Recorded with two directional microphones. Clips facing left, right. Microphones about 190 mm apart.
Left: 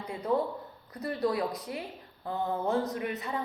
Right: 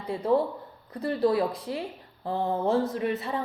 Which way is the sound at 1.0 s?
30° right (ahead or behind).